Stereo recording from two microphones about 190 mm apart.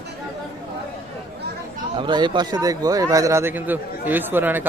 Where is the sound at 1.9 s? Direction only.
25° right (ahead or behind).